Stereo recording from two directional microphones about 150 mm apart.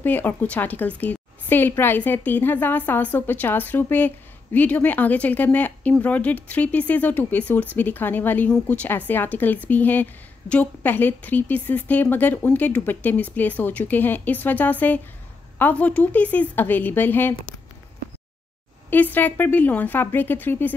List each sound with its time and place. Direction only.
0.0 s speech: 10° left (ahead or behind)
19.1 s speech: 10° left (ahead or behind)